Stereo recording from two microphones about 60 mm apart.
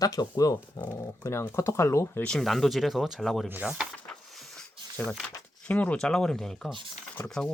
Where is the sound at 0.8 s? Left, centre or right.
Left.